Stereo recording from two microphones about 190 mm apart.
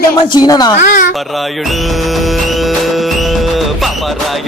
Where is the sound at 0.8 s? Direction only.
45° left (ahead or behind).